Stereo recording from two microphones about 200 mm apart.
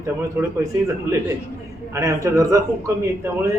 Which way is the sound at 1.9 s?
15° right (ahead or behind).